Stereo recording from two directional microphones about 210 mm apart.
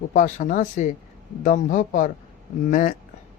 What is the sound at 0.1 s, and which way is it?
Speech, 40° left (ahead or behind).